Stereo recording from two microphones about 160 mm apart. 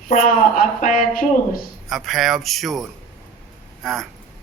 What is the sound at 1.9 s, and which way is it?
Speech, centre (ahead or behind).